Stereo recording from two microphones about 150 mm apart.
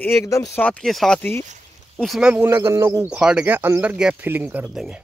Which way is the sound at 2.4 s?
20° right (ahead or behind).